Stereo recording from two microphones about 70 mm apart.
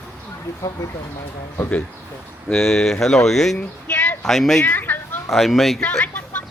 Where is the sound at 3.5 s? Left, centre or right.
Left.